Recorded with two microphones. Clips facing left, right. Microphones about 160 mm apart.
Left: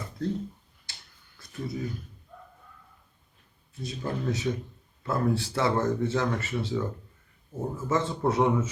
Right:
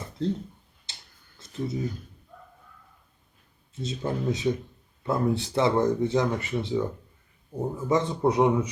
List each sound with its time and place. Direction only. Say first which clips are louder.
0.9 s finger snapping: right 1 dB; 20° right (ahead or behind)
1.4 s a sound: right 4 dB; 20° right (ahead or behind)
3.8 s a man's voice: right 3 dB; 20° right (ahead or behind)